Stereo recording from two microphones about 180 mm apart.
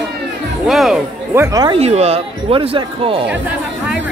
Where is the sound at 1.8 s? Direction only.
35° right (ahead or behind).